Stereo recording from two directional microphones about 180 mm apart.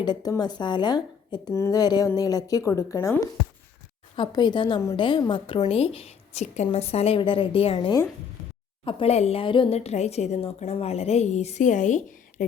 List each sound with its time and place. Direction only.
0.0 s a woman's voice: 20° left (ahead or behind); by 12.5 s 45° left (ahead or behind)